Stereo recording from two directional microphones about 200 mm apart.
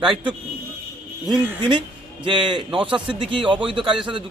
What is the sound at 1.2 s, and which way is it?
Speech, centre (ahead or behind).